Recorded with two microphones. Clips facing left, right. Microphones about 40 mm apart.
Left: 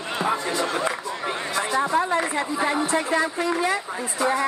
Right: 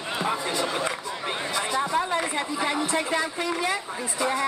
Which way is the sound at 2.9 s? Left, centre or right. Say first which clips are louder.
Left 3 dB; left.